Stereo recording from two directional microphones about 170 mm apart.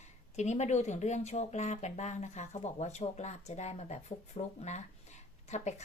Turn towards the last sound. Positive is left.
turn(degrees=40)  # may be behind; listen again after turning